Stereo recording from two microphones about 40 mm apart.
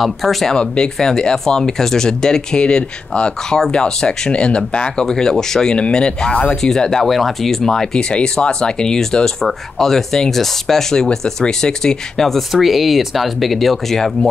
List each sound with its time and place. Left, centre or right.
0.0 s speech: centre; by 5.0 s left
5.0 s speech: centre
8.1 s speech: left
12.2 s speech: centre